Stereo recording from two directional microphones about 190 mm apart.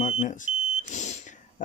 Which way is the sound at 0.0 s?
40° left (ahead or behind).